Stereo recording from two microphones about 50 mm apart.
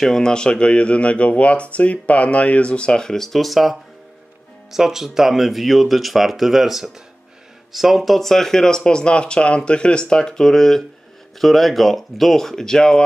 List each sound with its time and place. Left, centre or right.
0.0 s speech: centre